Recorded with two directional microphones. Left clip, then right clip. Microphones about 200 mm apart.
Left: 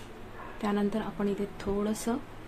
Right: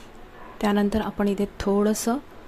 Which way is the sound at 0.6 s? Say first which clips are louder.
Right 7 dB; 35° right (ahead or behind).